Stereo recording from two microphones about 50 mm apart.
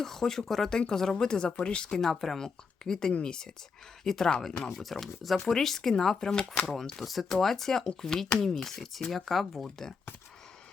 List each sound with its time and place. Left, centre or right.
0.0 s speech: centre
4.0 s speech: centre
9.6 s speech: centre